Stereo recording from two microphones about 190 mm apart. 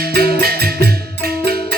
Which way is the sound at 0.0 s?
55° right (ahead or behind).